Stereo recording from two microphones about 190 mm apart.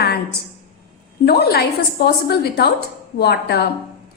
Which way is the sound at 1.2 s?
55° left (ahead or behind).